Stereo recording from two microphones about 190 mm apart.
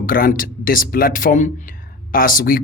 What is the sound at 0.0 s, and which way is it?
Speech, 50° left (ahead or behind).